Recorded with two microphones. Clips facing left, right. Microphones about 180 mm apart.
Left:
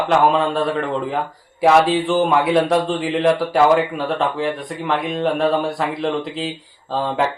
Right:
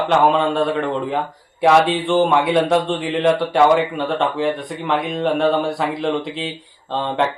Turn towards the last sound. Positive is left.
turn(degrees=5)  # may be behind; listen again after turning